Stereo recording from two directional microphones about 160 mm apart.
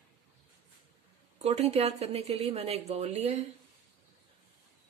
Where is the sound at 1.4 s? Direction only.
40° right (ahead or behind).